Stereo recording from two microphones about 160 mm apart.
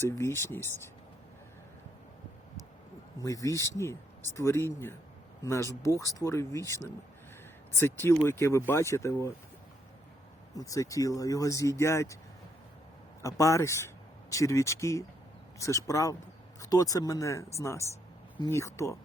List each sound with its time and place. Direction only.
0.0 s speech: 15° left (ahead or behind)
3.2 s speech: 20° left (ahead or behind)
10.5 s speech: 20° left (ahead or behind)
13.2 s speech: 20° left (ahead or behind)